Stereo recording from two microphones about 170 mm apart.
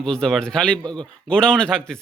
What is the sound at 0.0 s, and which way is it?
Speech, 5° left (ahead or behind).